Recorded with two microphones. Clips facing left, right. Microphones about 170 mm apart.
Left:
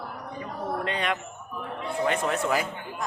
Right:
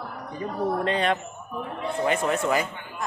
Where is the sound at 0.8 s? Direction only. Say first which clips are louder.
Right 4 dB; 35° right (ahead or behind).